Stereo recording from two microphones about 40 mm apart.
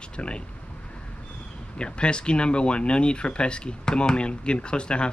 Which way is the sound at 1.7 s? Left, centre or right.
Left.